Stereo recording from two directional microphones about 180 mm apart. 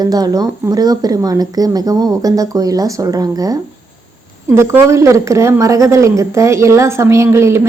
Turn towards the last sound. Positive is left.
turn(degrees=-15)  # may be behind; listen again after turning